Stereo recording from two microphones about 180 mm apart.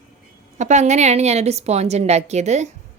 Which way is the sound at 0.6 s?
40° right (ahead or behind).